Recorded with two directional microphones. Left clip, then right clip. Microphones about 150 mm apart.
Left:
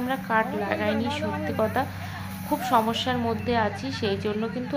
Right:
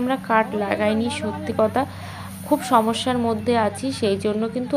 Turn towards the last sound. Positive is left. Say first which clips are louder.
# right 6 dB
turn(degrees=-25)  # may be behind; listen again after turning